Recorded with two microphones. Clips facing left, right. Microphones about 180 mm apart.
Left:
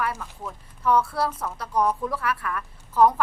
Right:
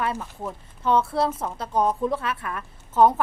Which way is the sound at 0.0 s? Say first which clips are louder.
Right 2 dB; 20° right (ahead or behind).